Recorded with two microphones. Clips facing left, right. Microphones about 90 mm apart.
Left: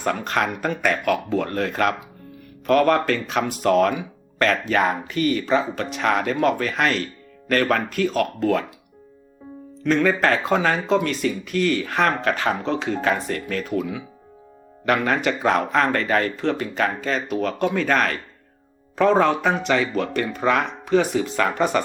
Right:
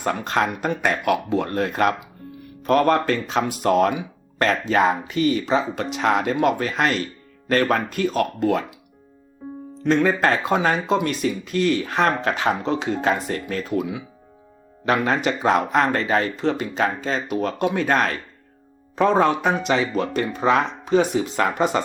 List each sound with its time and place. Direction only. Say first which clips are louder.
0.0 s speech: right 1 dB; 20° right (ahead or behind)
9.8 s speech: even; 20° right (ahead or behind)
19.2 s speech: even; 15° right (ahead or behind)